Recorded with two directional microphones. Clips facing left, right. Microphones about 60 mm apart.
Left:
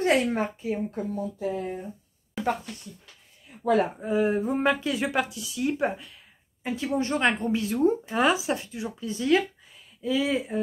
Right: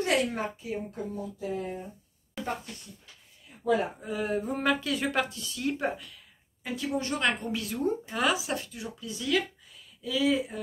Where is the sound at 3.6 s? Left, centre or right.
Left.